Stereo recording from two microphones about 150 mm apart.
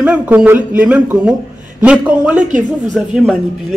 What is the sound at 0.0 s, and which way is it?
Speech, 10° right (ahead or behind).